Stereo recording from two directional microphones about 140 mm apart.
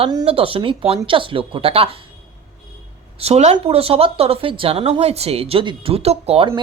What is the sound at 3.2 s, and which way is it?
Speech, 50° right (ahead or behind).